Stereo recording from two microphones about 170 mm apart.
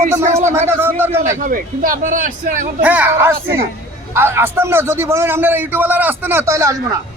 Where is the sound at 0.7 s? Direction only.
10° right (ahead or behind).